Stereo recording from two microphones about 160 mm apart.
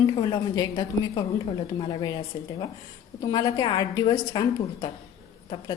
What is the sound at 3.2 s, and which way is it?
A woman's voice, 25° left (ahead or behind).